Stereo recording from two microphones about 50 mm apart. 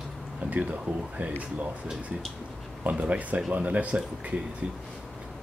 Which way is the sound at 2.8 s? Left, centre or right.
Right.